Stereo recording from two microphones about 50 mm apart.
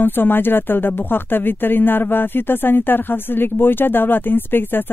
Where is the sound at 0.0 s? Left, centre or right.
Left.